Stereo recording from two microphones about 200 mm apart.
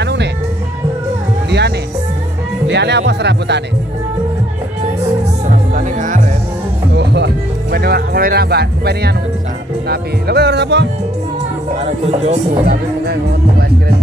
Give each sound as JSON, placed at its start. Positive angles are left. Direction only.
{"t": 0.0, "sound": "music", "side_deg": -60}
{"t": 2.7, "sound": "music", "side_deg": -60}
{"t": 5.5, "sound": "music", "side_deg": -40}
{"t": 7.0, "sound": "music", "side_deg": -60}
{"t": 7.7, "sound": "speech", "side_deg": -50}
{"t": 11.8, "sound": "speech", "side_deg": -30}
{"t": 12.6, "sound": "speech", "side_deg": -50}